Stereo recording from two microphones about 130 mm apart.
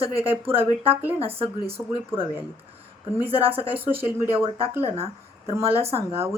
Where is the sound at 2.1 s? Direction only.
15° right (ahead or behind).